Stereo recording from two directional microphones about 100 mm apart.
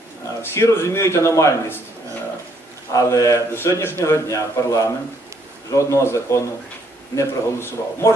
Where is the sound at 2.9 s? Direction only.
35° left (ahead or behind).